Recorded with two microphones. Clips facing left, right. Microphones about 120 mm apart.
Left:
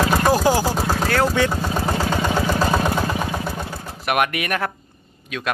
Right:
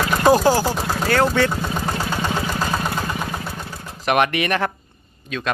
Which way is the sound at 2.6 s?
35° left (ahead or behind).